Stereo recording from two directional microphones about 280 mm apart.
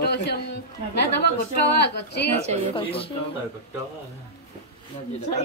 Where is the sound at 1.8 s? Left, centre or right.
Left.